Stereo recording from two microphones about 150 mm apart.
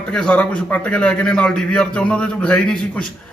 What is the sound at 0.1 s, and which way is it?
A man's voice, 5° left (ahead or behind).